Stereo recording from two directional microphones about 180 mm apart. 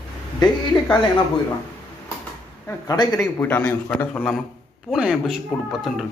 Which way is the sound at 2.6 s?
20° left (ahead or behind).